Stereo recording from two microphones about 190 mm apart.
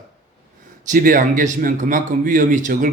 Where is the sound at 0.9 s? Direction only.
45° right (ahead or behind).